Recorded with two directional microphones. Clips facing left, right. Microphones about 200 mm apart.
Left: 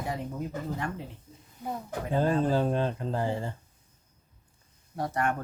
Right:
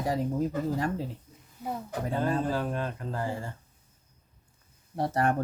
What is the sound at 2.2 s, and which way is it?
Speech, 25° left (ahead or behind).